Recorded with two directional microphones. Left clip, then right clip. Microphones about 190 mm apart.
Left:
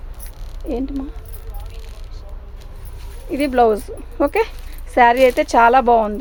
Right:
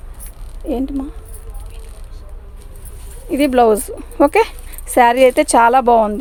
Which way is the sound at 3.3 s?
45° right (ahead or behind).